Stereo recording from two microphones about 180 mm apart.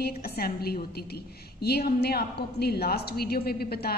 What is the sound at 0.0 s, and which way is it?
A woman's voice, 60° left (ahead or behind).